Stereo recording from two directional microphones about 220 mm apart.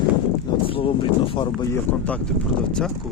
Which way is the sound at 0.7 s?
25° left (ahead or behind).